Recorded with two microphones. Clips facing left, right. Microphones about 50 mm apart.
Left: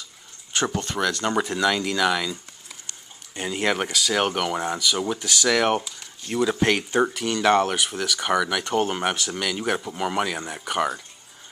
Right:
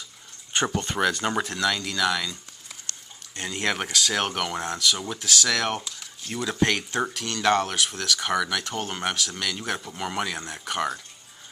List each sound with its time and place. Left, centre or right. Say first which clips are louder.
0.7 s speech: even; right
1.0 s speech: left 1 dB; centre
1.4 s speech: left 4 dB; centre